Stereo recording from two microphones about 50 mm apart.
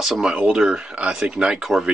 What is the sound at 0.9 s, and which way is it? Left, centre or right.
Speech, right.